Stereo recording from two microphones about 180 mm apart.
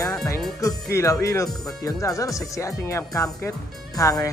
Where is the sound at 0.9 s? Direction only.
15° left (ahead or behind).